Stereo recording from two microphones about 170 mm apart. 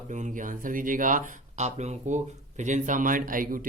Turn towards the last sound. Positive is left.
turn(degrees=-55)  # may be behind; listen again after turning